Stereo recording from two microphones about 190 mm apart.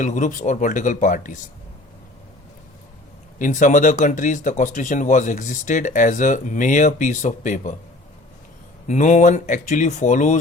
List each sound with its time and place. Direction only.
0.0 s speech: 40° left (ahead or behind)
3.3 s speech: 40° left (ahead or behind)
8.9 s speech: 40° left (ahead or behind)